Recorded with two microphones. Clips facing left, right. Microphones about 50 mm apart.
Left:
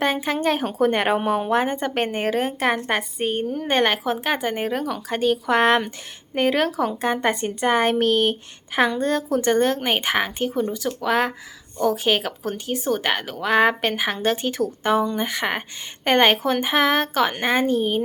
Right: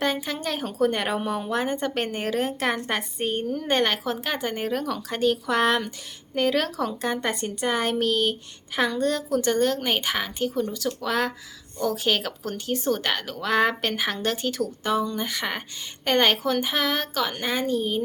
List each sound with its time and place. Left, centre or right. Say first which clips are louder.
0.0 s speech: left 5 dB; left
5.5 s a woman's voice: left 4 dB; left